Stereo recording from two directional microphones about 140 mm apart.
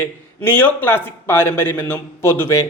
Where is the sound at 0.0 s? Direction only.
15° left (ahead or behind).